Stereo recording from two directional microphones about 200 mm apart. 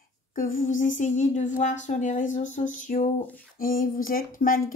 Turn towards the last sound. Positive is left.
turn(degrees=45)  # may be behind; listen again after turning